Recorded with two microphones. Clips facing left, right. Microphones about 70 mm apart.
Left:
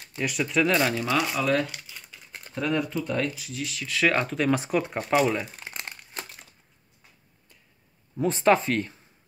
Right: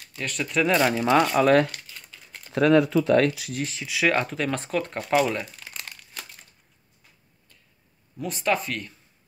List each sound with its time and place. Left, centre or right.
0.2 s speech: centre
0.7 s speech: centre
1.3 s speech: right
1.7 s crumpling: centre
2.5 s speech: right
3.8 s speech: centre
5.5 s crumpling: left
8.2 s speech: left